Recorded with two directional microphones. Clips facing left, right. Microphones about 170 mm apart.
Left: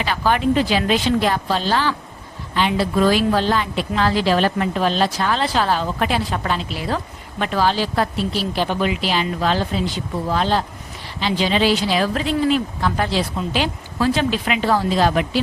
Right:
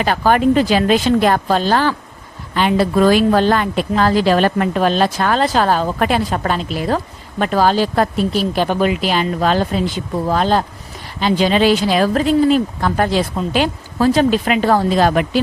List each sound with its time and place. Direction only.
0.0 s a woman's voice: 45° right (ahead or behind)